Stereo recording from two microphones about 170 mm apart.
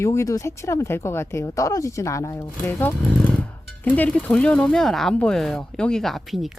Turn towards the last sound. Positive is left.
turn(degrees=0)  # may be behind; listen again after turning